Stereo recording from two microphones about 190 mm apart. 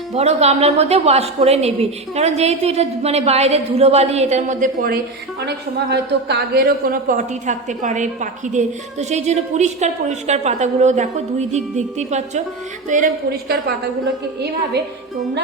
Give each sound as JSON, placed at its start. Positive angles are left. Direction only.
{"t": 0.1, "sound": "a man's voice", "side_deg": -35}
{"t": 5.5, "sound": "a man's voice", "side_deg": -60}